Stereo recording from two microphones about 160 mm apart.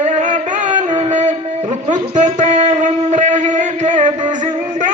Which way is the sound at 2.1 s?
50° right (ahead or behind).